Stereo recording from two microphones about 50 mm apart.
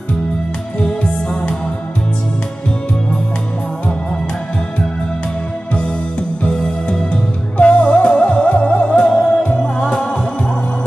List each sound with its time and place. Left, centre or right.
0.7 s music: left
6.4 s music: centre